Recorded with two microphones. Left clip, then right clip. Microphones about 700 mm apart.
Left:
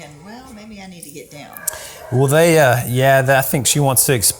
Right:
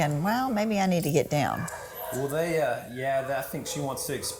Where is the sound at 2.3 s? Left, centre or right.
Left.